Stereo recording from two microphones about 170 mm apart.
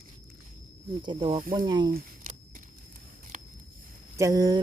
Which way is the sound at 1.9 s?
50° right (ahead or behind).